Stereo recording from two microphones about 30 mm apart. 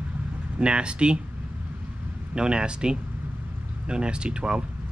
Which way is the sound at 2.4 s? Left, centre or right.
Right.